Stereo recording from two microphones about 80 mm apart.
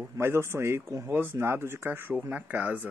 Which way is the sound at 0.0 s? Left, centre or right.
Right.